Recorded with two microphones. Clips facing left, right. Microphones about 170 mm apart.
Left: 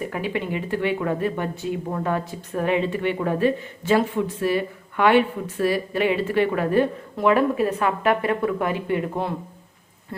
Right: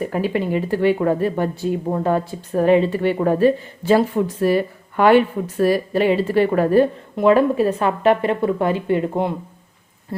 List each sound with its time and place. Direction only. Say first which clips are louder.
0.0 s speech: right 6 dB; 40° right (ahead or behind)